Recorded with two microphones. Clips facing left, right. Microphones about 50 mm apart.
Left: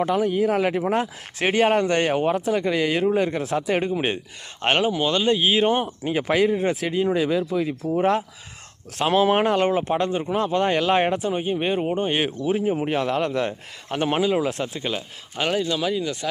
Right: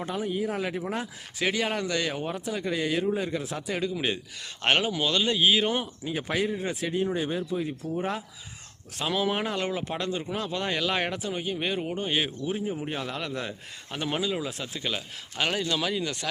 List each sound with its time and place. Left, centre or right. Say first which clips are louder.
0.0 s speech: left 9 dB; left
1.5 s speech: left 9 dB; left
2.1 s speech: left 10 dB; left
3.9 s speech: left 5 dB; left
4.6 s speech: left 4 dB; centre; by 5.9 s left
6.0 s speech: left 8 dB; left
6.5 s speech: left 9 dB; left
6.7 s speech: left 6 dB; left
9.4 s speech: left 9 dB; left
11.9 s speech: left 5 dB; left
12.5 s speech: left 8 dB; left
12.9 s speech: left 10 dB; left
13.9 s speech: left 8 dB; left
14.9 s speech: left 3 dB; centre